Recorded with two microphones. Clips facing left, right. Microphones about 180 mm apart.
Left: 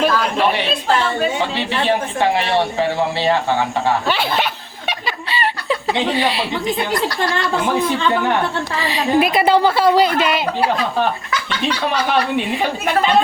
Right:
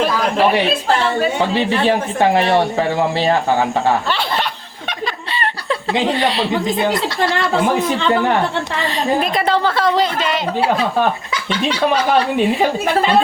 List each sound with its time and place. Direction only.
1.5 s speech: 45° right (ahead or behind)
4.9 s snicker: 5° left (ahead or behind)
6.1 s speech: 5° left (ahead or behind)
6.9 s speech: 25° right (ahead or behind)
8.8 s a woman's voice: 5° left (ahead or behind)